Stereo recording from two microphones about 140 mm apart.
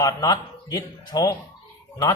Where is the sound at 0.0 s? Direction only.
25° left (ahead or behind).